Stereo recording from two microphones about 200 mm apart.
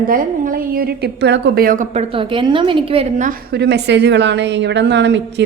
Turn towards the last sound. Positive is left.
turn(degrees=-60)  # may be behind; listen again after turning